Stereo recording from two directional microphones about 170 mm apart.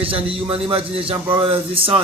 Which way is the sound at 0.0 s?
35° right (ahead or behind).